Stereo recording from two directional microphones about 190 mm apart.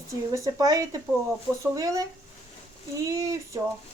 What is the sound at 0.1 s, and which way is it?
Speech, 15° right (ahead or behind).